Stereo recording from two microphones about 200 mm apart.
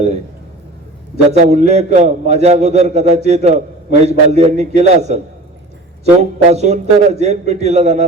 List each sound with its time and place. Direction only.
1.3 s a man's voice: 35° right (ahead or behind)